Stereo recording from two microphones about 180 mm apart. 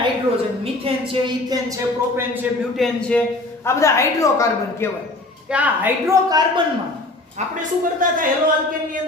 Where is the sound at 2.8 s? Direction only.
5° left (ahead or behind).